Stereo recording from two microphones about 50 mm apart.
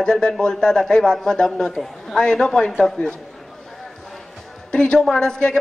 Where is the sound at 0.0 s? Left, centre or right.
Centre.